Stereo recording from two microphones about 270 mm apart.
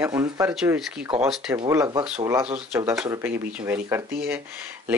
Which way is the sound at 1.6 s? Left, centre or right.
Centre.